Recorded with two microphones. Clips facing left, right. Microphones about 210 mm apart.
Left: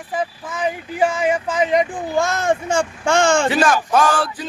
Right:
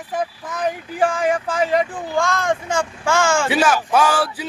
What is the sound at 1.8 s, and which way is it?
Speech, 20° left (ahead or behind).